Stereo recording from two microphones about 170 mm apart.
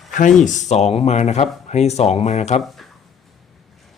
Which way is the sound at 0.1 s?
50° left (ahead or behind).